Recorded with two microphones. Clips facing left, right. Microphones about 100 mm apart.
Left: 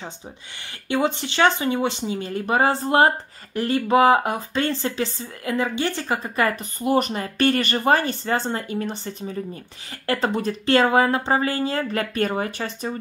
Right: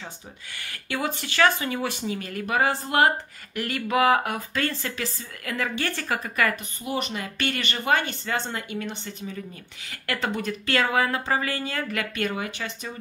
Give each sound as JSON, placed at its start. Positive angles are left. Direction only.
{"t": 0.7, "sound": "speech", "side_deg": 25}
{"t": 6.8, "sound": "speech", "side_deg": 45}